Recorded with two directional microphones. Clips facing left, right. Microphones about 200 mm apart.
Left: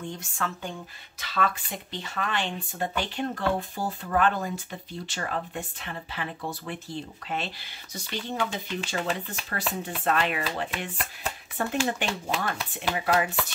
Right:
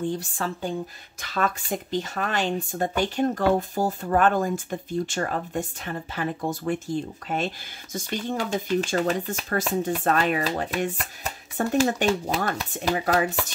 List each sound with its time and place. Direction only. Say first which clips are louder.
0.0 s speech: right 6 dB; 35° right (ahead or behind)
1.2 s speech: right 2 dB; 45° right (ahead or behind)